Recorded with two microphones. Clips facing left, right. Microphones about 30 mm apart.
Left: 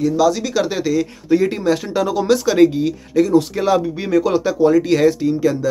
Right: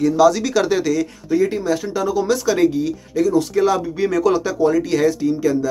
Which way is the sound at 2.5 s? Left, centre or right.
Left.